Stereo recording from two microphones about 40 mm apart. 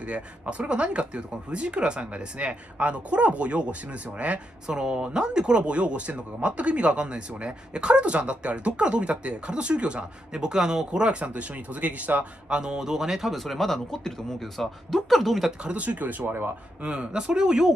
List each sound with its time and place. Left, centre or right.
0.0 s speech: right
4.6 s speech: right
10.3 s speech: centre
10.9 s speech: right
12.4 s speech: right
13.3 s speech: centre
15.6 s speech: right
16.8 s speech: right